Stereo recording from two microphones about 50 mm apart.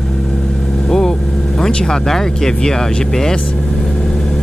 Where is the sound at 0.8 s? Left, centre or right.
Centre.